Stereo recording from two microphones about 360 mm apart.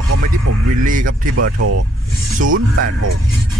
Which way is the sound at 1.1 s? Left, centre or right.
Right.